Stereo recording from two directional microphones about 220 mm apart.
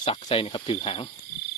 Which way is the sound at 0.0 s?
25° left (ahead or behind).